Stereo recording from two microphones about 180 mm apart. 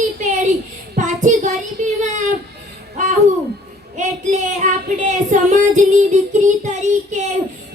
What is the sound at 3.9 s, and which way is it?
Child singing, 40° right (ahead or behind).